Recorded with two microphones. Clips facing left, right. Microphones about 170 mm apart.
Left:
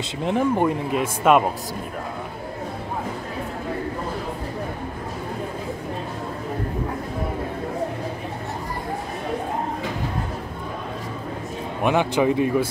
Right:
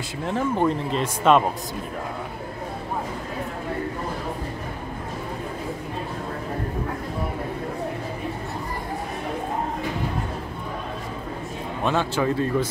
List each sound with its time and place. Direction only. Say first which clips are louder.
0.2 s speech: left 2 dB; 15° left (ahead or behind)
11.8 s speech: left 4 dB; 15° left (ahead or behind)